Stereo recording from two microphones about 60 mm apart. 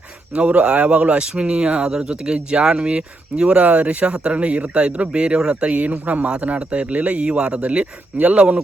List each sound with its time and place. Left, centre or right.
0.3 s a man's voice: centre